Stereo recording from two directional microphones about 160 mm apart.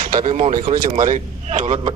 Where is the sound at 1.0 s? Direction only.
50° right (ahead or behind).